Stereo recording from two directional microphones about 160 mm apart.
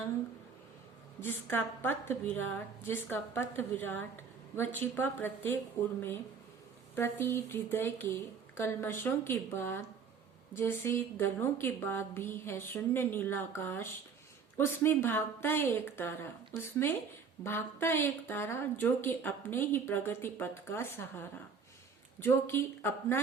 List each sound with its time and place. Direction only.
1.2 s a woman's voice: 15° left (ahead or behind)
6.9 s a woman's voice: 15° left (ahead or behind)